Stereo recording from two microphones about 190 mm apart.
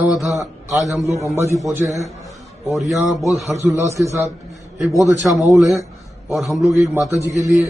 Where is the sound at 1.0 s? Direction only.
15° right (ahead or behind).